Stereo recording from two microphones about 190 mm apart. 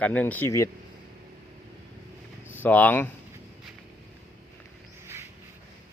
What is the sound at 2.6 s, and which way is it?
Speech, 10° left (ahead or behind).